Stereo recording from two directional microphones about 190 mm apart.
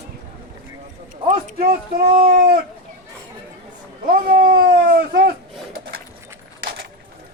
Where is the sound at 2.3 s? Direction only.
60° right (ahead or behind).